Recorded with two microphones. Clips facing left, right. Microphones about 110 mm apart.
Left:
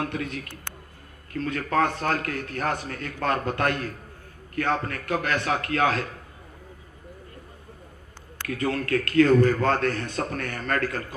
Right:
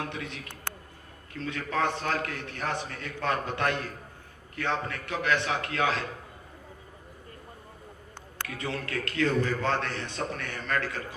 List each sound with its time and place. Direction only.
0.0 s a man's voice: 50° left (ahead or behind)
8.4 s a man's voice: 50° left (ahead or behind)